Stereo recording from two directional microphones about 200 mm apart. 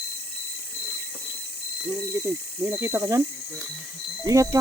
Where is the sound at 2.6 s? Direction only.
15° right (ahead or behind).